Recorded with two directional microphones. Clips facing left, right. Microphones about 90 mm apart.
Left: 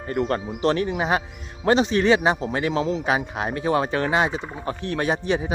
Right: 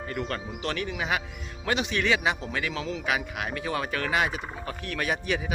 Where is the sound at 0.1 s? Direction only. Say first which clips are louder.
Left 10 dB; 40° left (ahead or behind).